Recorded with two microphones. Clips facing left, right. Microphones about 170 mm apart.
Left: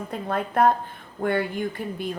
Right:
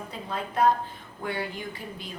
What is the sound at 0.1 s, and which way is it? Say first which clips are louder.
A woman's voice: left 7 dB; 55° left (ahead or behind).